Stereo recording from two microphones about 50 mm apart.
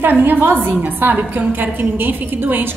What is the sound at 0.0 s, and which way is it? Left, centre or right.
A woman's voice, right.